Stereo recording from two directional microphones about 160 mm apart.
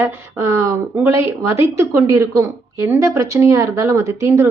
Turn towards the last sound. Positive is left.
turn(degrees=-15)  # may be behind; listen again after turning